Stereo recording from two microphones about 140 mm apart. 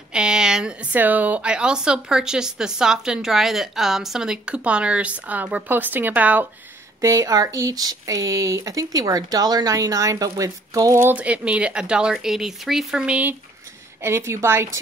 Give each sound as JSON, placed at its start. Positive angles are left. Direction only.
{"t": 0.1, "sound": "a woman's voice", "side_deg": -5}
{"t": 7.0, "sound": "speech", "side_deg": -20}